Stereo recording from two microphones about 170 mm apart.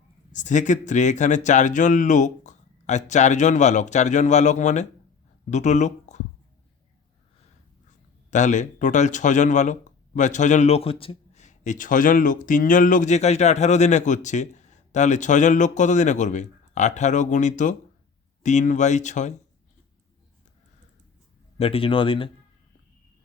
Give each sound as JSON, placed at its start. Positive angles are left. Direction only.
{"t": 0.3, "sound": "speech", "side_deg": 45}
{"t": 8.3, "sound": "speech", "side_deg": 45}
{"t": 21.6, "sound": "speech", "side_deg": 35}